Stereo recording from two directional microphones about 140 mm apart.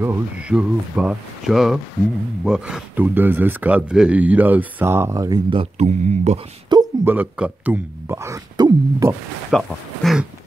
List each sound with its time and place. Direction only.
0.0 s speech: 10° right (ahead or behind)
5.8 s speech: 55° right (ahead or behind)
6.7 s a sound: 30° right (ahead or behind)
7.1 s speech: 10° right (ahead or behind); by 9.1 s 25° right (ahead or behind)
9.5 s speech: centre (ahead or behind)